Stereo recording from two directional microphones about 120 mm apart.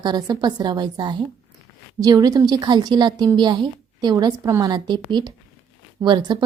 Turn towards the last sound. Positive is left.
turn(degrees=-35)  # may be behind; listen again after turning